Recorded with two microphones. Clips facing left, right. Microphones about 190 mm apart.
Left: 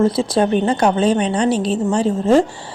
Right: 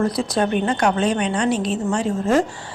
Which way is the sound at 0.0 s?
30° left (ahead or behind).